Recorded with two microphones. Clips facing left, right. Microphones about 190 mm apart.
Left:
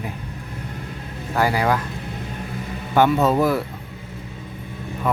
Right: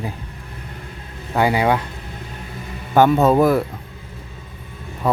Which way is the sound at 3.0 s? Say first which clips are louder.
Right 3 dB; 50° right (ahead or behind).